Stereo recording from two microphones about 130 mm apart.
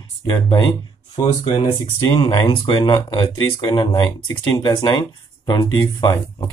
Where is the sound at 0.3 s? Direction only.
30° left (ahead or behind).